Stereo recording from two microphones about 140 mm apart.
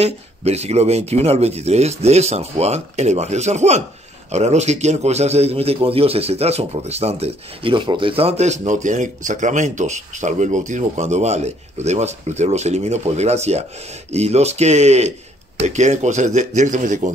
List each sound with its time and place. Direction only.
0.0 s a man's voice: 50° right (ahead or behind)